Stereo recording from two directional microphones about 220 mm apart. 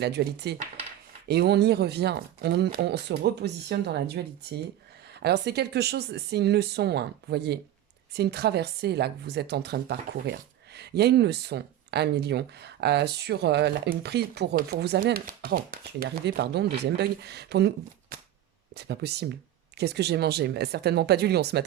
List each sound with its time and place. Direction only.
0.0 s speech: 50° right (ahead or behind)
5.2 s speech: 50° right (ahead or behind)
18.7 s speech: 50° right (ahead or behind)